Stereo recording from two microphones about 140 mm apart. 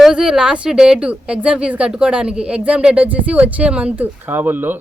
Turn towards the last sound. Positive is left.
turn(degrees=-15)  # may be behind; listen again after turning